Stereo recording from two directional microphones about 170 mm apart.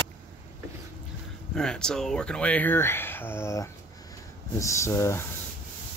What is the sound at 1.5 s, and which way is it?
Speech, 5° left (ahead or behind).